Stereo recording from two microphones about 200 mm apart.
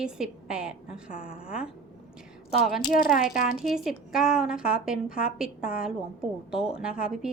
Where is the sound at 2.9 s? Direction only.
45° left (ahead or behind).